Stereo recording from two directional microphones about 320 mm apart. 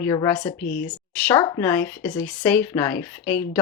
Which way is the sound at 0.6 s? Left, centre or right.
Left.